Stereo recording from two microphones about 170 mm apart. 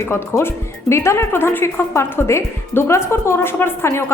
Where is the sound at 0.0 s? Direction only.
15° left (ahead or behind).